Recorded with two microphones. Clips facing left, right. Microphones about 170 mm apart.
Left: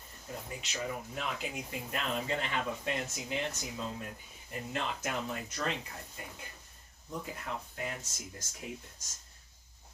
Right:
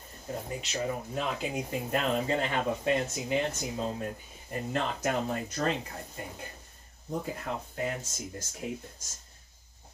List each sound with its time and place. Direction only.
0.3 s speech: 35° right (ahead or behind)